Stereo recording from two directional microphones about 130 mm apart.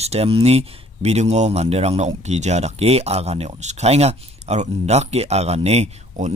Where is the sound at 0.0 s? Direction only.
50° right (ahead or behind).